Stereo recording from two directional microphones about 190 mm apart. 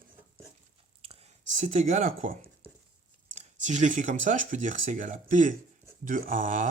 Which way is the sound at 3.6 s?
40° right (ahead or behind).